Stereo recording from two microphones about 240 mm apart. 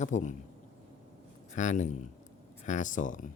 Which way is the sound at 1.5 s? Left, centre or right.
Left.